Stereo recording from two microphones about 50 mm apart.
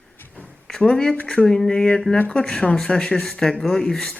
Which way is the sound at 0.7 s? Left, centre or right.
Centre.